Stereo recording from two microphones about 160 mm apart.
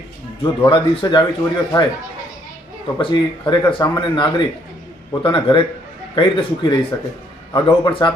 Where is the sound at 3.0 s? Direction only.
30° left (ahead or behind).